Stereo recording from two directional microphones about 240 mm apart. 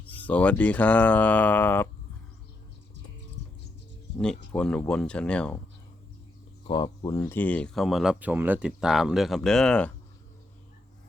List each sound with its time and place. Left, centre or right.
0.0 s speech: centre
3.4 s patter: right
4.2 s speech: centre
6.7 s speech: centre